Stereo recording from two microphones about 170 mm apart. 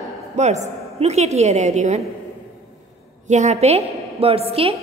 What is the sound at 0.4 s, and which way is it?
A woman's voice, 40° right (ahead or behind).